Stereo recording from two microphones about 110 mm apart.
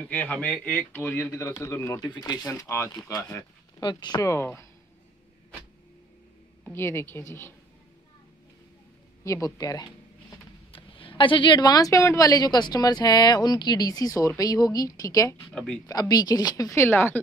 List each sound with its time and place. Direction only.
0.1 s speech: 15° left (ahead or behind)
2.0 s speech: 40° left (ahead or behind)
2.4 s speech: 20° left (ahead or behind)
3.8 s speech: 40° left (ahead or behind)
4.2 s speech: 25° left (ahead or behind)
6.6 s speech: 20° left (ahead or behind)
9.2 s speech: 30° left (ahead or behind)
10.7 s speech: 55° left (ahead or behind); by 15.3 s 30° left (ahead or behind)
15.5 s speech: 10° left (ahead or behind)
15.9 s speech: 35° left (ahead or behind)